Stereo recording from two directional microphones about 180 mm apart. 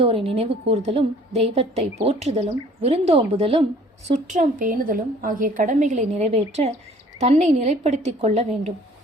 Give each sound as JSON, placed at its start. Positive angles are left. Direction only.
{"t": 0.0, "sound": "a woman's voice", "side_deg": -30}
{"t": 4.1, "sound": "a woman's voice", "side_deg": -40}